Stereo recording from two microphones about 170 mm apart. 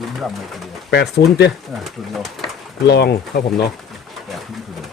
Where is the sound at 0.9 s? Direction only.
80° left.